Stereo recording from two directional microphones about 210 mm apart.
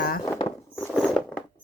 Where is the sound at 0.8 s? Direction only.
5° left (ahead or behind).